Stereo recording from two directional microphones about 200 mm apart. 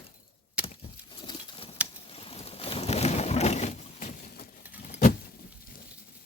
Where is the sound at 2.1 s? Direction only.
30° left (ahead or behind).